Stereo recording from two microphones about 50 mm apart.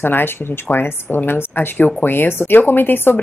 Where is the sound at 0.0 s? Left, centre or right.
Left.